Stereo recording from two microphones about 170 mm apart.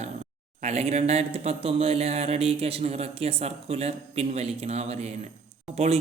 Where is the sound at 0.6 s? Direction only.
40° right (ahead or behind).